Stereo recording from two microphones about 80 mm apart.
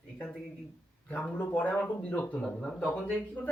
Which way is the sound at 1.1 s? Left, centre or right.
Centre.